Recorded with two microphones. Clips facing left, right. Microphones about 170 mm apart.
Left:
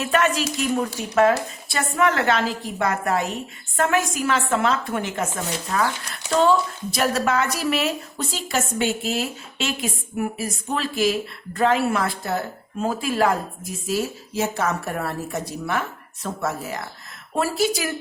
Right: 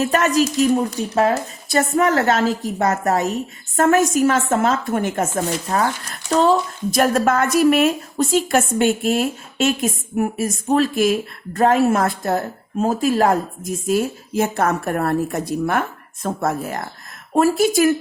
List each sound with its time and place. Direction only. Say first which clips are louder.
0.0 s a woman's voice: right 4 dB; 40° right (ahead or behind)